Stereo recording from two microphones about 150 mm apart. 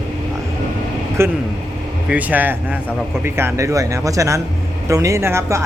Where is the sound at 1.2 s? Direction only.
15° right (ahead or behind).